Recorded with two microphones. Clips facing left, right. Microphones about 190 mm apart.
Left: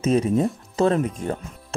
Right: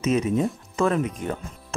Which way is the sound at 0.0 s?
35° left (ahead or behind).